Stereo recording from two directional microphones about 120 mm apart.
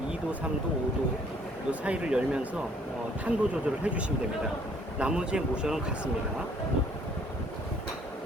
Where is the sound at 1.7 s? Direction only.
10° right (ahead or behind).